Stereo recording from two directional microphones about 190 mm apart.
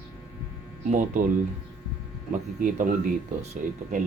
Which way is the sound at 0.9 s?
40° right (ahead or behind).